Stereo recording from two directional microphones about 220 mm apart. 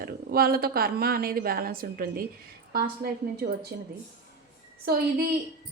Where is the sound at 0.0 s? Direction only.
45° right (ahead or behind).